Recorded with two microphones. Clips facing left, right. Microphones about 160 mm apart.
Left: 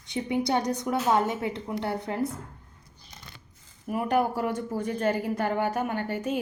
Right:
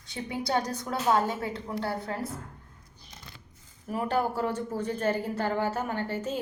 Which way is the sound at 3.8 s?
15° left (ahead or behind).